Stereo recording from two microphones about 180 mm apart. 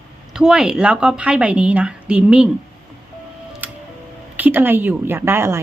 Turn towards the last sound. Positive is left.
turn(degrees=-15)  # may be behind; listen again after turning